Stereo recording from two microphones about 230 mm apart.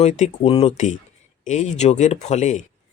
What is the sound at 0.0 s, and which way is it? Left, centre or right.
Speech, left.